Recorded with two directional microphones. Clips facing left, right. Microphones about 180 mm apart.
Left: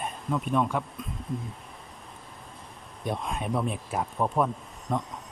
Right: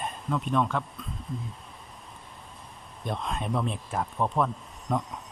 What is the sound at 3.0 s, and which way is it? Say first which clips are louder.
Speech: left 1 dB; 10° left (ahead or behind).